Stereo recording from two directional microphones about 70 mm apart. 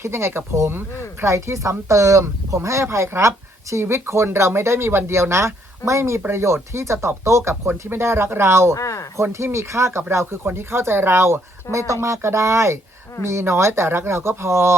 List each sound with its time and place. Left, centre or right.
0.0 s speech: right
7.7 s speech: right
8.7 s speech: left
9.2 s speech: right